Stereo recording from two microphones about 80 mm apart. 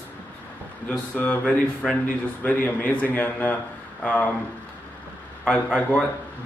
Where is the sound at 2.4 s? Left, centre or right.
Left.